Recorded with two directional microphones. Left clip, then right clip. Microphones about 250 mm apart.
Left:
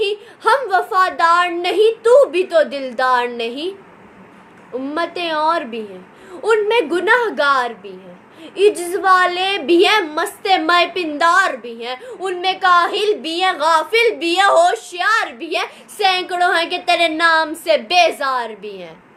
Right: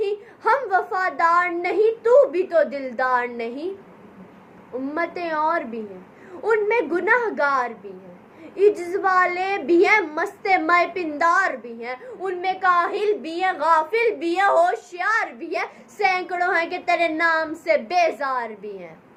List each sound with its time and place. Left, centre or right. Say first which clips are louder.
0.0 s a sound: left 5 dB; centre
2.0 s a woman's voice: left 4 dB; centre
4.9 s a woman's voice: left 5 dB; centre
16.8 s speech: left 6 dB; left
17.2 s a woman's voice: left 6 dB; centre